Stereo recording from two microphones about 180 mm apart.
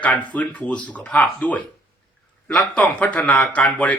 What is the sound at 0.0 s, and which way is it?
Speech, 10° left (ahead or behind).